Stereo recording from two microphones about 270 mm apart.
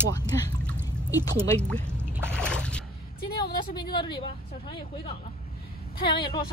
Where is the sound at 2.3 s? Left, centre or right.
Centre.